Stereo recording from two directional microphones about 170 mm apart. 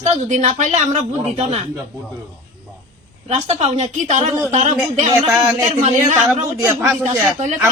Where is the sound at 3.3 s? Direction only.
40° right (ahead or behind).